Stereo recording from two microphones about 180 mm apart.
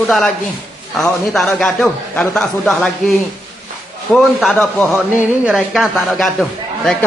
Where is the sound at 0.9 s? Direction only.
Centre (ahead or behind).